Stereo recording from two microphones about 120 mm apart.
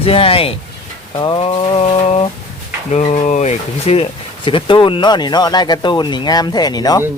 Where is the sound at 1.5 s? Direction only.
55° left (ahead or behind).